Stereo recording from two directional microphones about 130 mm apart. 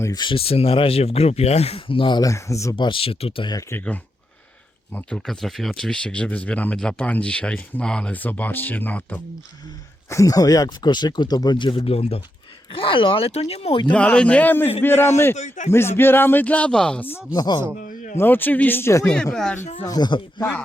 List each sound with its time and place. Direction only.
0.0 s speech: 35° left (ahead or behind)
2.3 s speech: 25° left (ahead or behind)
2.7 s speech: 40° left (ahead or behind)
3.5 s speech: 15° left (ahead or behind)
10.1 s speech: 25° left (ahead or behind)
11.8 s speech: 50° left (ahead or behind)
13.9 s speech: 10° left (ahead or behind)
15.4 s speech: 65° left (ahead or behind)
15.7 s speech: 20° left (ahead or behind)
17.3 s speech: 35° left (ahead or behind)
18.2 s speech: 15° left (ahead or behind)
19.0 s speech: 5° left (ahead or behind)
19.8 s speech: 30° left (ahead or behind)